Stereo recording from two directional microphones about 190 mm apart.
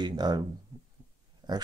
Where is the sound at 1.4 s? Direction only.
20° right (ahead or behind).